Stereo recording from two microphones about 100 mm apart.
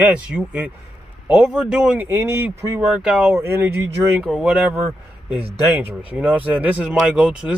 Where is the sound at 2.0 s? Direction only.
20° right (ahead or behind).